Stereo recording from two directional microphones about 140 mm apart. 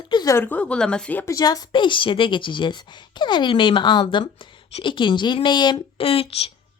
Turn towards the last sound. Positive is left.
turn(degrees=45)  # may be behind; listen again after turning